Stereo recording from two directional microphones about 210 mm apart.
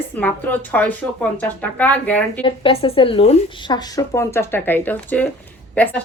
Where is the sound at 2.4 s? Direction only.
25° left (ahead or behind).